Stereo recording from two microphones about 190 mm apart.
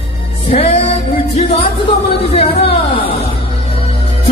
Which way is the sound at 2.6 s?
30° left (ahead or behind).